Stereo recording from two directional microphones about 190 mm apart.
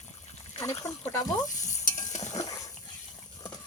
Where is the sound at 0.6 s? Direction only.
15° left (ahead or behind).